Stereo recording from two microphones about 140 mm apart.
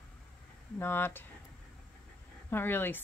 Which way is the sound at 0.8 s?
15° left (ahead or behind).